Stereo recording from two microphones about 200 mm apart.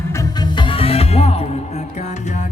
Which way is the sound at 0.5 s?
30° left (ahead or behind).